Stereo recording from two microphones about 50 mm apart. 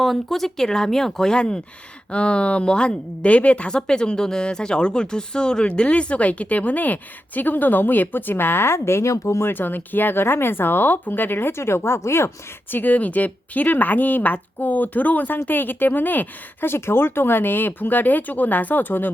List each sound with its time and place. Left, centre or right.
0.0 s speech: centre; by 3.8 s left
3.8 s a woman's voice: centre; by 9.5 s left
9.5 s speech: left
12.7 s a woman's voice: left